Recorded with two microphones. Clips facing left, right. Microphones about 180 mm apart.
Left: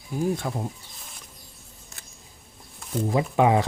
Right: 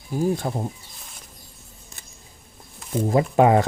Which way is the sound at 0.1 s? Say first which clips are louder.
Right 3 dB; 35° right (ahead or behind).